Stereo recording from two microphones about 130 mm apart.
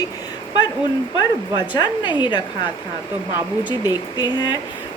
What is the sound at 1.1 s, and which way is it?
Speech, 35° left (ahead or behind).